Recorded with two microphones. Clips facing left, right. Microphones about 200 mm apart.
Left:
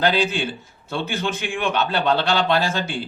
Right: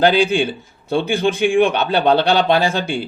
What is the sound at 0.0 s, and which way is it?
Speech, 55° right (ahead or behind).